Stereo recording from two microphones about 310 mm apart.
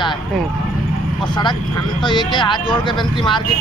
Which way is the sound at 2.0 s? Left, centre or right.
Centre.